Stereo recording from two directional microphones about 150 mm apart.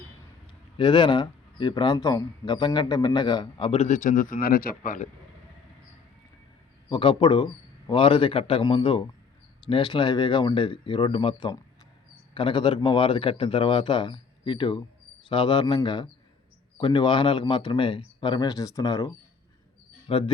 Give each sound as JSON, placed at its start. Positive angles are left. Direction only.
{"t": 0.8, "sound": "speech", "side_deg": 30}
{"t": 6.9, "sound": "speech", "side_deg": 35}